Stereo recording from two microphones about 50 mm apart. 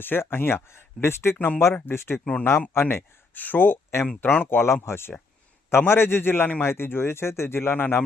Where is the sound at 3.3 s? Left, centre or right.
Left.